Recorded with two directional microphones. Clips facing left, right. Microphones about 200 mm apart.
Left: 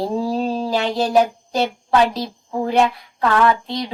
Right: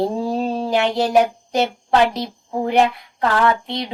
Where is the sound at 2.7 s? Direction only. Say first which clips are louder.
Right 1 dB; 20° right (ahead or behind).